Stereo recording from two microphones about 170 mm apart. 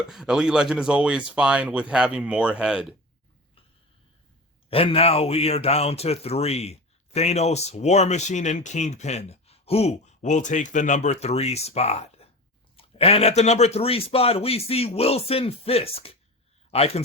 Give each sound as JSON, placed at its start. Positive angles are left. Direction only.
{"t": 0.1, "sound": "speech", "side_deg": 0}
{"t": 4.7, "sound": "speech", "side_deg": 35}